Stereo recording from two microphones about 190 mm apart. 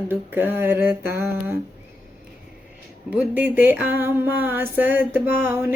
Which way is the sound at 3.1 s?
5° right (ahead or behind).